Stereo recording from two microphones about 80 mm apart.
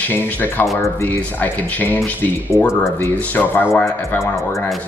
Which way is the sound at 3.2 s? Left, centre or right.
Left.